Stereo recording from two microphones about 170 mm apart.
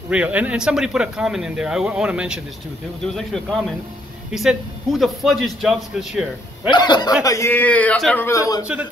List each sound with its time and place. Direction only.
0.1 s a man's voice: 10° right (ahead or behind)
4.3 s a man's voice: centre (ahead or behind)
6.7 s a man's voice: 25° left (ahead or behind); by 8.3 s 5° left (ahead or behind)
8.3 s a man's voice: 20° left (ahead or behind)